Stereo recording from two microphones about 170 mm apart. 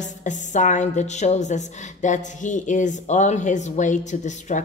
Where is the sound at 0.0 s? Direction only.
45° left (ahead or behind).